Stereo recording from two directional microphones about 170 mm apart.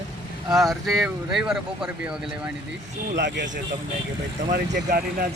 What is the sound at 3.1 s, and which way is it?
Speech, 90° right.